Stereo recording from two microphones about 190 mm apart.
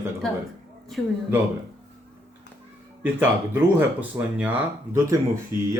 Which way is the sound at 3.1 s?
10° right (ahead or behind).